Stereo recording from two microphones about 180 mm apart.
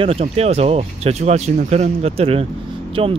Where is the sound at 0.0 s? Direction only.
35° right (ahead or behind).